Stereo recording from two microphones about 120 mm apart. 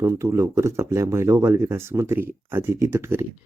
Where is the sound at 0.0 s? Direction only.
20° right (ahead or behind).